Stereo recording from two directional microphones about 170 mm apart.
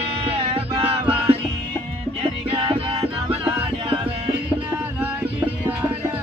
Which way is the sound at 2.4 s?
35° right (ahead or behind).